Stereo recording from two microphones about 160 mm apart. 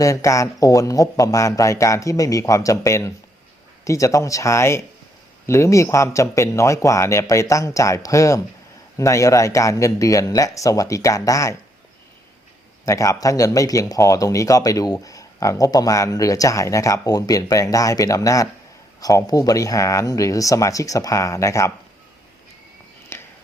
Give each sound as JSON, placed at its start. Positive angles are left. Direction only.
{"t": 0.0, "sound": "speech", "side_deg": 20}
{"t": 12.8, "sound": "speech", "side_deg": 20}
{"t": 23.1, "sound": "a sound", "side_deg": 15}